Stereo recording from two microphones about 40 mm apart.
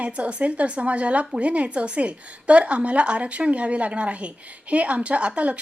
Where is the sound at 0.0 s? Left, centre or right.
Right.